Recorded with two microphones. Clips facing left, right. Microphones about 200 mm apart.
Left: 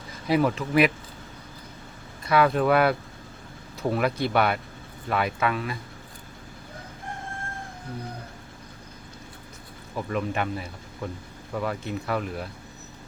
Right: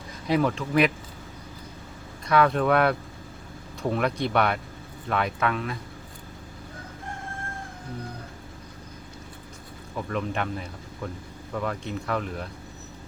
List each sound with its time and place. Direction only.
0.3 s speech: 5° left (ahead or behind)
2.2 s speech: 5° left (ahead or behind)
9.9 s speech: 5° left (ahead or behind)